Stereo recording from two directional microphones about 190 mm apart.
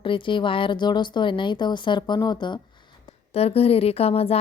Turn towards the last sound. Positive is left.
turn(degrees=30)  # may be behind; listen again after turning